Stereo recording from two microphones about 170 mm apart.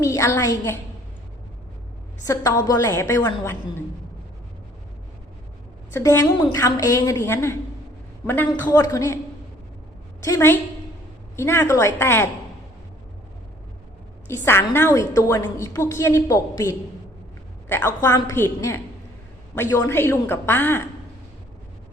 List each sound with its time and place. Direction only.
0.0 s a woman's voice: 20° left (ahead or behind)
2.2 s a woman's voice: 20° left (ahead or behind)
5.9 s a woman's voice: 15° left (ahead or behind)
10.2 s a woman's voice: 20° left (ahead or behind)
14.3 s a woman's voice: 15° left (ahead or behind)